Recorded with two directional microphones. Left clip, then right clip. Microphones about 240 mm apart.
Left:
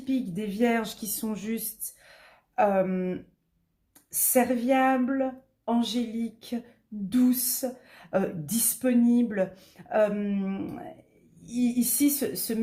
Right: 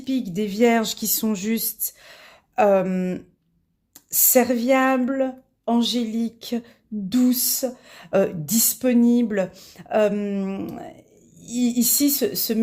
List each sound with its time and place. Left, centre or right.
0.0 s a woman's voice: right